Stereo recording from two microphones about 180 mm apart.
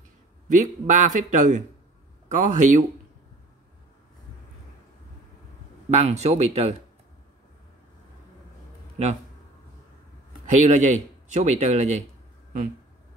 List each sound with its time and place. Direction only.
0.5 s speech: 45° right (ahead or behind)
5.9 s speech: 40° right (ahead or behind)
10.4 s speech: 40° right (ahead or behind)